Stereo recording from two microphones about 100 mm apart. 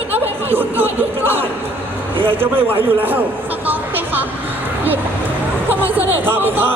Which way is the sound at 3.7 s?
20° right (ahead or behind).